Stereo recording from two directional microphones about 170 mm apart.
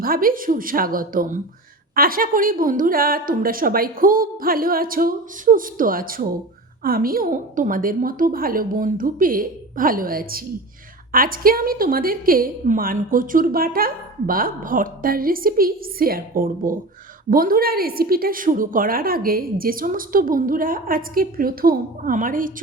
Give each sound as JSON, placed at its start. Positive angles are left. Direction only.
{"t": 0.0, "sound": "a woman's voice", "side_deg": -60}